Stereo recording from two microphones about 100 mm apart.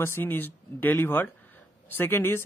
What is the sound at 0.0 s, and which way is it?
Speech, 20° left (ahead or behind).